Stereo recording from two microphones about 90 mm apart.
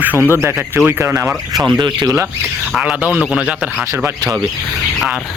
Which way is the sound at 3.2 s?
10° right (ahead or behind).